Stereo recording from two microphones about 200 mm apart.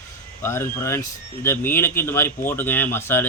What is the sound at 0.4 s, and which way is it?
Speech, 10° left (ahead or behind).